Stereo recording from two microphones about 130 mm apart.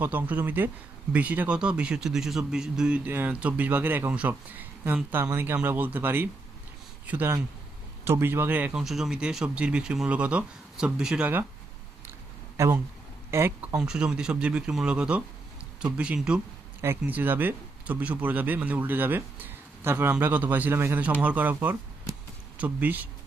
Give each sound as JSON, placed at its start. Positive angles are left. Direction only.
{"t": 0.0, "sound": "speech", "side_deg": -15}
{"t": 8.8, "sound": "speech", "side_deg": 0}
{"t": 12.5, "sound": "speech", "side_deg": -20}
{"t": 13.7, "sound": "speech", "side_deg": -5}